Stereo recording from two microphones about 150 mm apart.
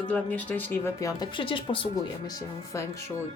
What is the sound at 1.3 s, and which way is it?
Speech, 35° left (ahead or behind).